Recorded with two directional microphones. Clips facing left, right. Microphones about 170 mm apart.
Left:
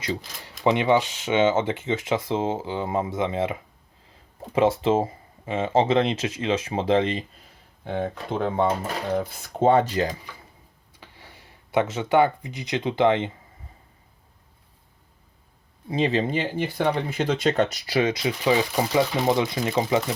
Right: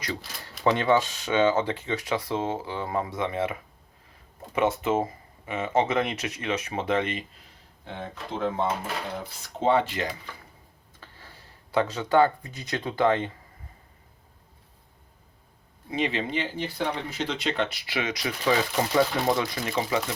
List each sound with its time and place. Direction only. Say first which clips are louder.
0.6 s speech: left 2 dB; 15° left (ahead or behind)
7.9 s speech: left 8 dB; 55° left (ahead or behind); by 10.1 s 40° left (ahead or behind)
11.0 s speech: left 2 dB; 15° left (ahead or behind)
15.9 s speech: left 5 dB; 35° left (ahead or behind)
18.4 s speech: left 2 dB; 15° left (ahead or behind)